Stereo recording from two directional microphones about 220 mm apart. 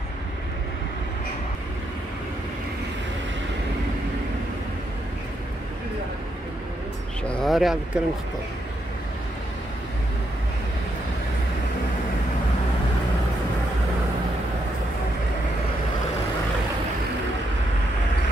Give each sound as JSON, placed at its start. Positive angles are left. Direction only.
{"t": 7.2, "sound": "speech", "side_deg": 0}